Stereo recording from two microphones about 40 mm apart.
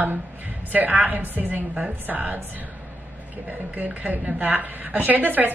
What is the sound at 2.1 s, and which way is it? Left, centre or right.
Speech, right.